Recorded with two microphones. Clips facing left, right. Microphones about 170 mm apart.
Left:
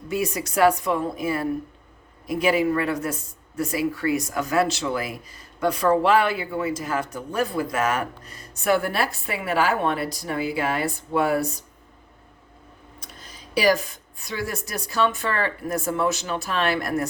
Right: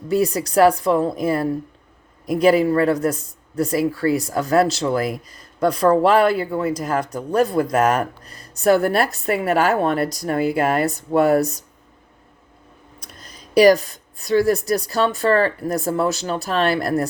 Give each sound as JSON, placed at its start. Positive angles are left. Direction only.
{"t": 0.1, "sound": "speech", "side_deg": -35}
{"t": 13.0, "sound": "speech", "side_deg": -40}